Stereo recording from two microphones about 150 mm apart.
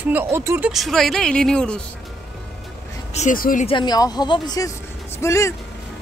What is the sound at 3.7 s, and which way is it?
Speech, 30° left (ahead or behind).